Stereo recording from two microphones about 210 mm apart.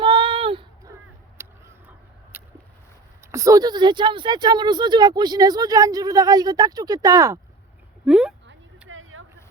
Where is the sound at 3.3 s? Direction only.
15° right (ahead or behind).